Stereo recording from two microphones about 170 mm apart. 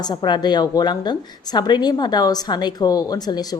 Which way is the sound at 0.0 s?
25° left (ahead or behind).